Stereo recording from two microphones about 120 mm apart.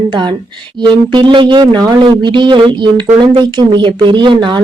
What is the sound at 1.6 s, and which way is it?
Speech, 30° right (ahead or behind).